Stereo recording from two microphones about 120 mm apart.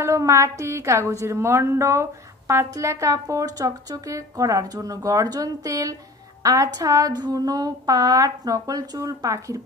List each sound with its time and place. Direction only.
0.0 s a woman's voice: 25° right (ahead or behind)